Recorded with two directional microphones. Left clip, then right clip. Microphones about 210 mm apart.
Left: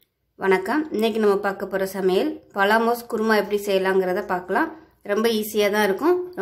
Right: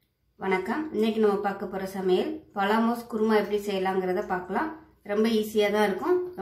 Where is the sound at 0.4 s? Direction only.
50° left (ahead or behind).